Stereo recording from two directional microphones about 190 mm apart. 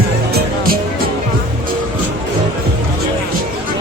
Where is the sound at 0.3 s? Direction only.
55° right (ahead or behind).